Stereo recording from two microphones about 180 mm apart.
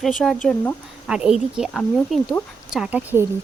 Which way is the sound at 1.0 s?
5° right (ahead or behind).